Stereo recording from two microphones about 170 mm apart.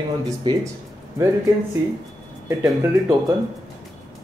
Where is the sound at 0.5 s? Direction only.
25° right (ahead or behind).